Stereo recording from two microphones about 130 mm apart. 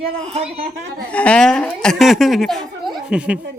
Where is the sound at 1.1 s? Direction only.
10° left (ahead or behind); by 3.4 s 10° right (ahead or behind).